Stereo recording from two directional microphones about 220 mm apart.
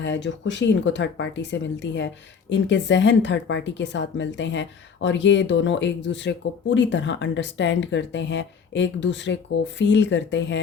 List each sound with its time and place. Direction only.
0.0 s a woman's voice: 55° left (ahead or behind)